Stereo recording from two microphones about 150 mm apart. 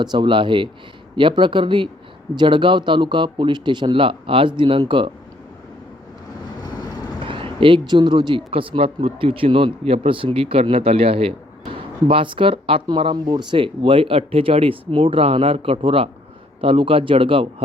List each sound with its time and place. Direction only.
0.0 s speech: 30° right (ahead or behind)
7.3 s speech: 35° right (ahead or behind)